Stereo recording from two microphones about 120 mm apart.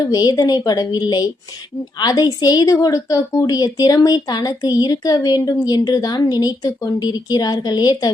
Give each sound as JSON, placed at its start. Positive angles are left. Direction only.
{"t": 0.0, "sound": "a woman's voice", "side_deg": 30}